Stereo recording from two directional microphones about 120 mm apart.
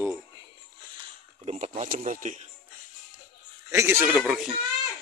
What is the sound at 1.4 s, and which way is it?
Speech, 60° right (ahead or behind).